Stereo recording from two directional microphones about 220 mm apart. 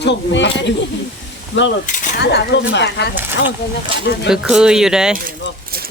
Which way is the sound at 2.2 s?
50° left (ahead or behind).